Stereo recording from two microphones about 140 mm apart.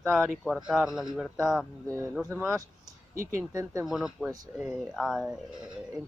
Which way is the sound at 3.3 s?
20° right (ahead or behind).